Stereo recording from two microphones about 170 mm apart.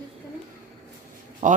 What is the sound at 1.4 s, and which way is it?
Speech, 45° right (ahead or behind).